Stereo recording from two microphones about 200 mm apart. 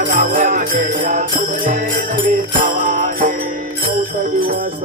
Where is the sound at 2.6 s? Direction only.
40° right (ahead or behind).